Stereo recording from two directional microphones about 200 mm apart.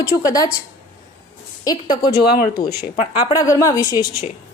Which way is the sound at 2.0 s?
45° left (ahead or behind).